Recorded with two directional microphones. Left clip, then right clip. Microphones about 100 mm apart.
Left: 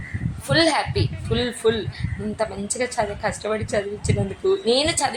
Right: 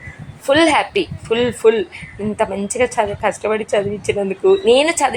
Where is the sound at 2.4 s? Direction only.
40° right (ahead or behind).